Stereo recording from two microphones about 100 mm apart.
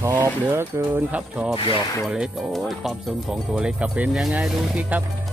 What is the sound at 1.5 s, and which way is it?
Speech, 55° left (ahead or behind).